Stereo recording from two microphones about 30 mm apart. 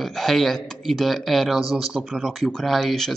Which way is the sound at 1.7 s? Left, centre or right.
Right.